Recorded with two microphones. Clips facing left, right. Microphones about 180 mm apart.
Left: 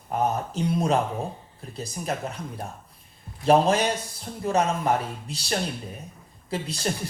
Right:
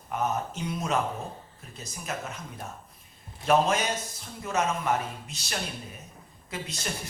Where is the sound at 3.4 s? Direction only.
35° left (ahead or behind).